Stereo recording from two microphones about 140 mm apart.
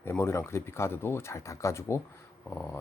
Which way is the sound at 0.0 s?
15° left (ahead or behind).